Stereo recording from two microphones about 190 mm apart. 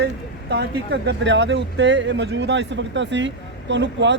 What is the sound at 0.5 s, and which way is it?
Speech, 80° right.